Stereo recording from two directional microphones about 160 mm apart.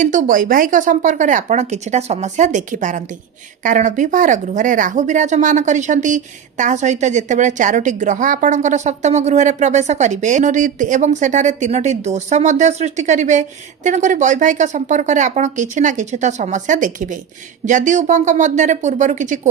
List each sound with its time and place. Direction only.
0.0 s speech: 55° right (ahead or behind)